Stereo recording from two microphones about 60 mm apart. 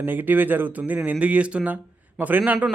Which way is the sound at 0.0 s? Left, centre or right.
Right.